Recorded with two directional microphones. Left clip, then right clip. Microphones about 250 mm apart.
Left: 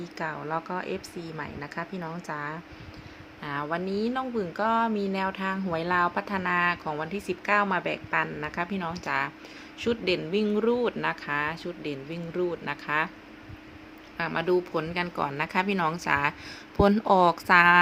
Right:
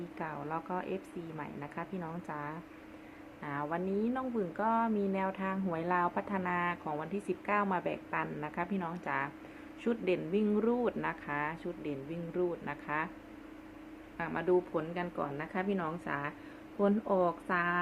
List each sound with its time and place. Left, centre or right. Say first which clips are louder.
0.2 s speech: left 8 dB; centre
14.2 s speech: left 5 dB; centre